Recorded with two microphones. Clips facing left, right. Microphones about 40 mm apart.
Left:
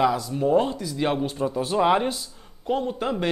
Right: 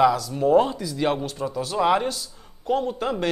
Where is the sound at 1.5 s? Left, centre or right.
Left.